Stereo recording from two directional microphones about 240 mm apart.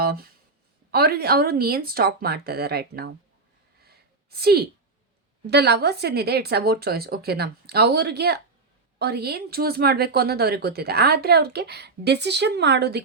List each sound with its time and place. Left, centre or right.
0.0 s speech: right
3.8 s a sound: right
5.5 s speech: right